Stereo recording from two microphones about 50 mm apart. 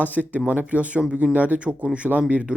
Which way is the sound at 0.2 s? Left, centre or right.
Right.